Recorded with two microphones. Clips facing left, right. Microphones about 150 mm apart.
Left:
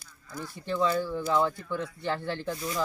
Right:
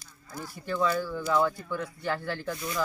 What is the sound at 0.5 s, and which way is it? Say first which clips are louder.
Speech: left 1 dB; 25° left (ahead or behind).